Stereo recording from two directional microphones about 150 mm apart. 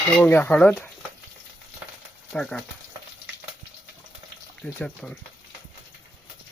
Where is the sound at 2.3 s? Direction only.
5° left (ahead or behind).